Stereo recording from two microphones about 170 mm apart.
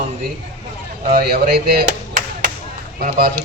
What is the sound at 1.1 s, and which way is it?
A man's voice, 60° right (ahead or behind).